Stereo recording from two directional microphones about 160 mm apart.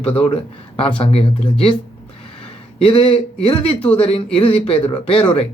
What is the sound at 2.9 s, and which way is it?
Speech, 35° left (ahead or behind).